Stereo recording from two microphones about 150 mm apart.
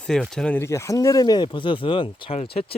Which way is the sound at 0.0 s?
5° left (ahead or behind).